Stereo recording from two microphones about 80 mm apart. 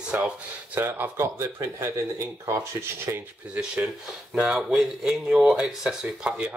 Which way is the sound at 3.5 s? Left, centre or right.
Centre.